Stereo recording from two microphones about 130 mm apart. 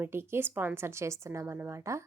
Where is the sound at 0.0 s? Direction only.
20° right (ahead or behind).